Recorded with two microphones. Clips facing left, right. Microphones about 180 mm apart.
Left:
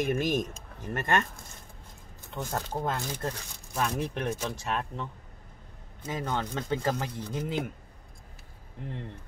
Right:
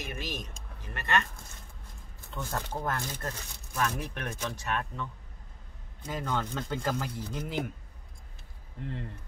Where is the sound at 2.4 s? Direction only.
15° left (ahead or behind).